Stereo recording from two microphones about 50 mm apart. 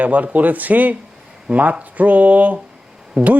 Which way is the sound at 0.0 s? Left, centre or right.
Right.